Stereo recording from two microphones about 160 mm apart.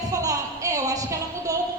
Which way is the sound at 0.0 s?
20° right (ahead or behind).